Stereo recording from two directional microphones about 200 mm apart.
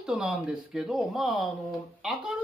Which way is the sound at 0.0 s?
5° right (ahead or behind).